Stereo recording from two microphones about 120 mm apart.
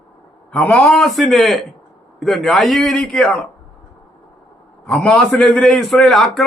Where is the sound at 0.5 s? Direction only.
10° left (ahead or behind).